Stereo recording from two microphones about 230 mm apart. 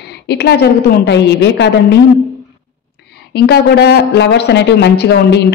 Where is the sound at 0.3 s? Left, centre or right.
Left.